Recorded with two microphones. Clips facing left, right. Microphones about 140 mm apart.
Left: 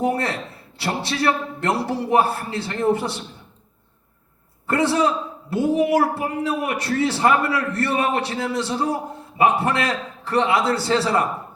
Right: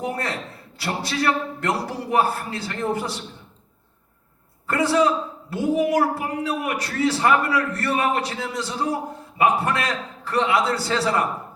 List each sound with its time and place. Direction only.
0.0 s a man's voice: 30° left (ahead or behind)
4.6 s a man's voice: 30° left (ahead or behind)